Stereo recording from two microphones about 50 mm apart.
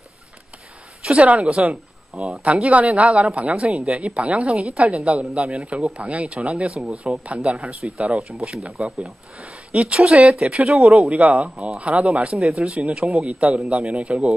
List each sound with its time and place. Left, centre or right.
1.1 s a woman's voice: right
1.6 s speech: centre
2.4 s a woman's voice: right
3.5 s a woman's voice: centre
6.5 s speech: centre
9.4 s speech: centre
11.1 s a woman's voice: right
11.4 s speech: centre
11.8 s a woman's voice: right
12.1 s speech: centre
12.7 s a woman's voice: right
13.0 s speech: centre
13.7 s a woman's voice: right